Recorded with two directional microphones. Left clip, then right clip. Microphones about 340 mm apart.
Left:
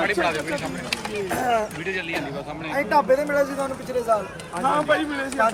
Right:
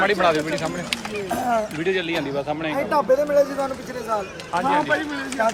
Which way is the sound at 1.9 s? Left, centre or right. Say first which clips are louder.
Right 5 dB; right.